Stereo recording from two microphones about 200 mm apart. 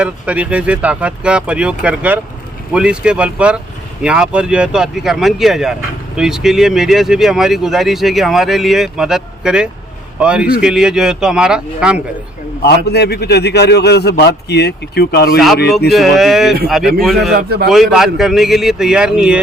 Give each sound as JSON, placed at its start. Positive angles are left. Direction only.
{"t": 0.0, "sound": "speech", "side_deg": -5}
{"t": 12.6, "sound": "a man's voice", "side_deg": 55}
{"t": 15.9, "sound": "speech", "side_deg": 0}
{"t": 17.3, "sound": "a man's voice", "side_deg": -50}
{"t": 17.7, "sound": "speech", "side_deg": 0}